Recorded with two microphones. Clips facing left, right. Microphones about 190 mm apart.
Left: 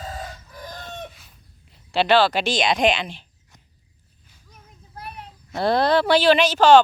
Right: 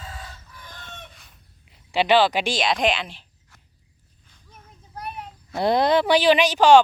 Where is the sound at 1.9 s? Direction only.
15° right (ahead or behind).